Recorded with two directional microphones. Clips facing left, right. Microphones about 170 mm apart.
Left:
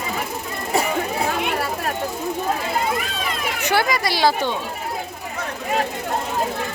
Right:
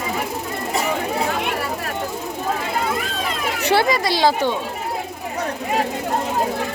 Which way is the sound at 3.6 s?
30° right (ahead or behind).